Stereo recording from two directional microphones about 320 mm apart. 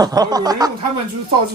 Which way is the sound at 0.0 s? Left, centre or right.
Centre.